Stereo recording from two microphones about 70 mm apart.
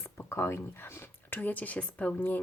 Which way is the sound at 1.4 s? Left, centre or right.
Left.